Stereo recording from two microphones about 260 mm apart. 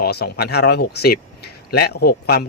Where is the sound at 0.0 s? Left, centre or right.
Left.